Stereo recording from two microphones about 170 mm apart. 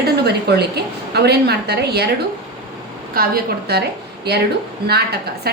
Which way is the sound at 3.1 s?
60° right (ahead or behind).